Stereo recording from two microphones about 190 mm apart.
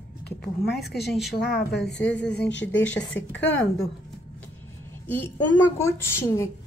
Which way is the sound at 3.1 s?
75° left (ahead or behind).